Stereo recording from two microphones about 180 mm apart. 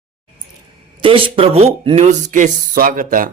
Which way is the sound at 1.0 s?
30° right (ahead or behind).